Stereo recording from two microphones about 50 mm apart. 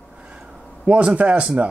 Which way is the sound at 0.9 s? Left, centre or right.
Right.